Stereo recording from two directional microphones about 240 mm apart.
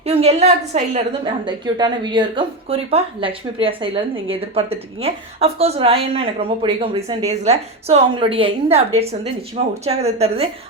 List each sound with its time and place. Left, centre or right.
0.0 s a woman's voice: right
9.8 s a woman's voice: right